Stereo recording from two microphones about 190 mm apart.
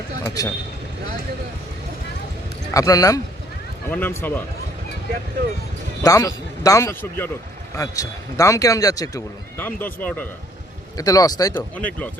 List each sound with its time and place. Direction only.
0.3 s a man's voice: 20° left (ahead or behind)
2.7 s a man's voice: 20° left (ahead or behind)
6.0 s a man's voice: 15° left (ahead or behind)
11.7 s speech: 10° left (ahead or behind)